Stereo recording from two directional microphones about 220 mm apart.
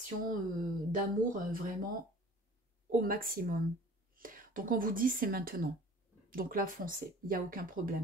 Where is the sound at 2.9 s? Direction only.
40° right (ahead or behind).